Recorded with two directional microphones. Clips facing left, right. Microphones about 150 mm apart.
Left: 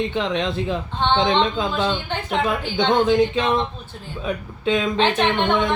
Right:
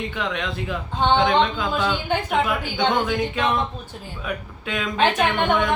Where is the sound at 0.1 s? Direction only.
25° left (ahead or behind).